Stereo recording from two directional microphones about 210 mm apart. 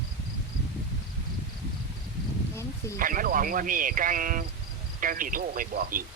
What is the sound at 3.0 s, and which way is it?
Speech, 40° right (ahead or behind).